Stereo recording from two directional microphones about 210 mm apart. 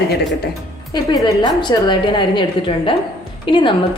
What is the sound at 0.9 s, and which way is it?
A woman's voice, 20° left (ahead or behind).